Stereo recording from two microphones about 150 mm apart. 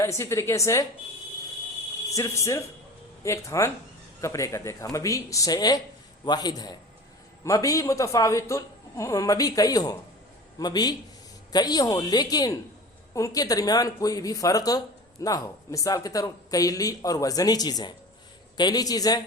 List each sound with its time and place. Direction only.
0.0 s speech: 20° left (ahead or behind)
2.1 s speech: 20° left (ahead or behind)